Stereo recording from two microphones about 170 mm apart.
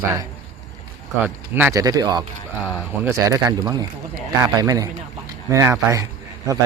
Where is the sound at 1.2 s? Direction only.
10° right (ahead or behind).